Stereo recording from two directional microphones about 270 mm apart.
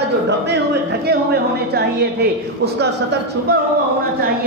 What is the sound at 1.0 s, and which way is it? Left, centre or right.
A woman's voice, right.